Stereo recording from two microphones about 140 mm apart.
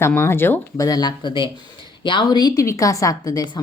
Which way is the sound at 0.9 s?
30° left (ahead or behind).